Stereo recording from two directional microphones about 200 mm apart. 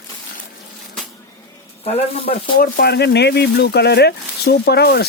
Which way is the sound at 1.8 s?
30° left (ahead or behind).